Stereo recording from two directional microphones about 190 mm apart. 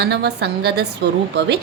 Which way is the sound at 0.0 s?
60° right (ahead or behind).